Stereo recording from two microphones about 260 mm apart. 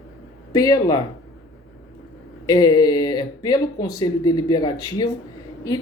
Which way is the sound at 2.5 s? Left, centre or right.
Centre.